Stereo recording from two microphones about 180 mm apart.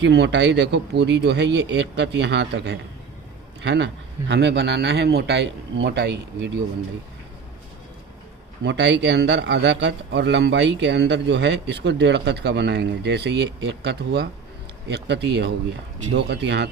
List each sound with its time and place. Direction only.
0.0 s a man's voice: 70° right (ahead or behind)
8.6 s a man's voice: 75° right (ahead or behind)